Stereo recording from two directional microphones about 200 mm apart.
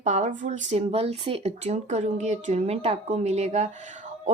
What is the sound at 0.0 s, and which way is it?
A woman's voice, 35° right (ahead or behind).